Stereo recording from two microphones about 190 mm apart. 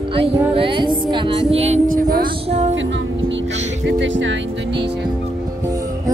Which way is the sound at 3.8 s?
75° right (ahead or behind).